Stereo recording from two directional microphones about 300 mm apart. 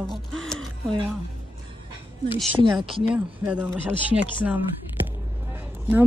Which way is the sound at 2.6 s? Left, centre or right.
Centre.